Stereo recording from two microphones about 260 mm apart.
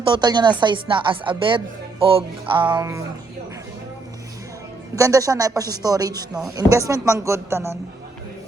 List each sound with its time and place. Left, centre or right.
0.0 s a woman's voice: centre
4.9 s speech: centre